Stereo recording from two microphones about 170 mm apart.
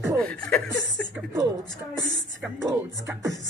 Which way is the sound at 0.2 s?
5° left (ahead or behind).